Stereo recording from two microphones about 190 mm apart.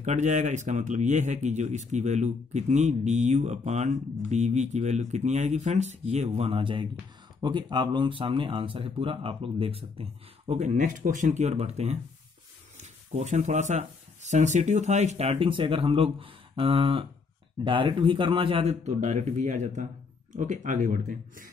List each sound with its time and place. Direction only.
0.0 s speech: 40° right (ahead or behind)